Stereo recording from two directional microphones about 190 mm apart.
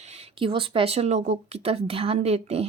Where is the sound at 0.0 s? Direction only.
35° right (ahead or behind).